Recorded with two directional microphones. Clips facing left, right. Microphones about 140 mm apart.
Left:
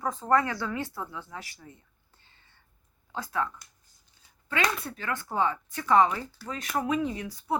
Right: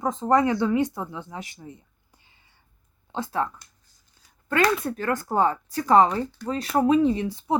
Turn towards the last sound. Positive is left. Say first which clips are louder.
# right 10 dB
turn(degrees=-25)  # may be behind; listen again after turning